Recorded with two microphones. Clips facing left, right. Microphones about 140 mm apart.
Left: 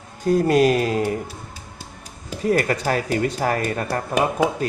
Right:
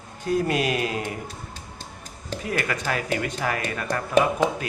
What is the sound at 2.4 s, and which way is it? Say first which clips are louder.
A man's voice: left 8 dB; 40° left (ahead or behind).